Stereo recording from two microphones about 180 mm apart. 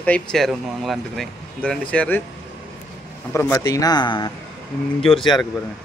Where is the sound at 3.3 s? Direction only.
15° left (ahead or behind).